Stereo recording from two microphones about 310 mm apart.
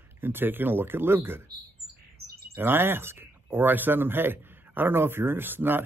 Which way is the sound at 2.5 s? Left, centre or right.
Centre.